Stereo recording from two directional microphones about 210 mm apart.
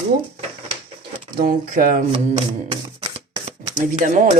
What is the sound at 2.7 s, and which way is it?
Camera, 25° right (ahead or behind).